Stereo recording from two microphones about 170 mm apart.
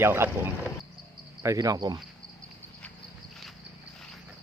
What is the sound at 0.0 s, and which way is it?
Speech, 15° right (ahead or behind).